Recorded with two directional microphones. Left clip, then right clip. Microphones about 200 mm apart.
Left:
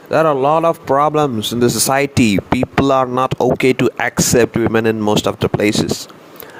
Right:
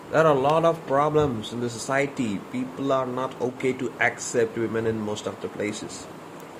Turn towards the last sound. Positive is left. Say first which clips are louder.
# left 14 dB
turn(degrees=55)  # may be behind; listen again after turning